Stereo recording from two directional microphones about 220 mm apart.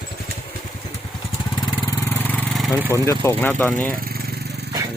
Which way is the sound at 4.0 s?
45° right (ahead or behind).